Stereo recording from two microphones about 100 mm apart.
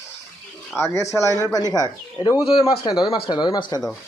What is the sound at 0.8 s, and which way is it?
A man's voice, 30° left (ahead or behind).